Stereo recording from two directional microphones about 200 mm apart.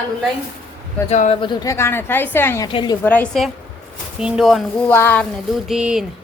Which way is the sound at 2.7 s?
25° left (ahead or behind).